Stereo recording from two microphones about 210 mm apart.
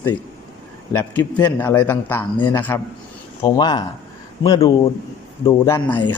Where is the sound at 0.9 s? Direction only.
10° left (ahead or behind).